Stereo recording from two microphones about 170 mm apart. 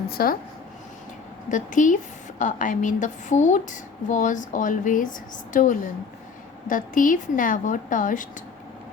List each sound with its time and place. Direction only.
0.1 s speech: 60° left (ahead or behind)
1.5 s a woman's voice: 50° left (ahead or behind)